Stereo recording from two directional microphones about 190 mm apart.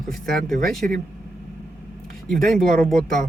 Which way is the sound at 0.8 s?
45° right (ahead or behind).